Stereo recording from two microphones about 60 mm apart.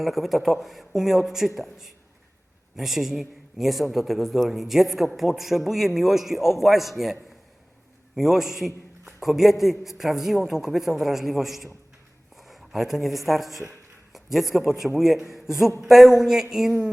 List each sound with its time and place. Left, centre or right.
0.0 s a man's voice: centre